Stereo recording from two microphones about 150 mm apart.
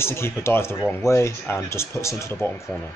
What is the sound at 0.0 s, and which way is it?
Speech, 15° left (ahead or behind).